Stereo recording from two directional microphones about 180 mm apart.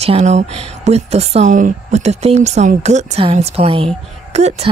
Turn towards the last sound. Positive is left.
turn(degrees=-40)  # may be behind; listen again after turning